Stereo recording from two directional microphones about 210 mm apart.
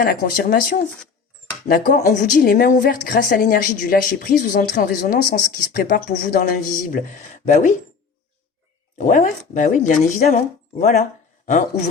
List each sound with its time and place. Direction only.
0.0 s speech: 40° left (ahead or behind)
9.0 s speech: 35° left (ahead or behind)